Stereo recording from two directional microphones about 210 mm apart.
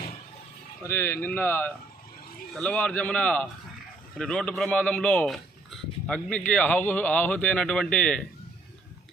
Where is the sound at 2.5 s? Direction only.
5° left (ahead or behind).